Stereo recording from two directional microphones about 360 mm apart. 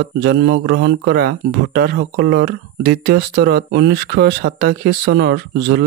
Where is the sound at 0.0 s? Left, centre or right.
Right.